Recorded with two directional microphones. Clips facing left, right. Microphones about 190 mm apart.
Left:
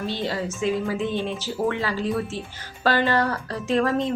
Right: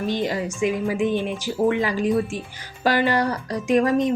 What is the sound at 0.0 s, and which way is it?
Speech, 15° right (ahead or behind).